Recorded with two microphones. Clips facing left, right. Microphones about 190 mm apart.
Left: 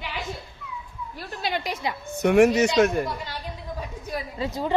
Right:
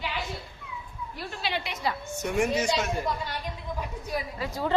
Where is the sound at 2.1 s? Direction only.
70° left (ahead or behind).